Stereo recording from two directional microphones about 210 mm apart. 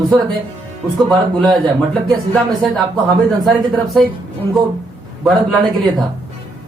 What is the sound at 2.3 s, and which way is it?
Speech, centre (ahead or behind).